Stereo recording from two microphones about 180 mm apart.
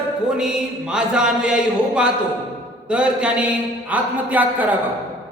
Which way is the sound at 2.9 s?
5° right (ahead or behind).